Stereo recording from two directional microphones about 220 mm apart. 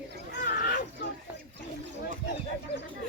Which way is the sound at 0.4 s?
40° left (ahead or behind).